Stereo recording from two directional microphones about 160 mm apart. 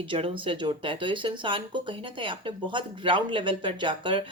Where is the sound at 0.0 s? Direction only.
30° right (ahead or behind).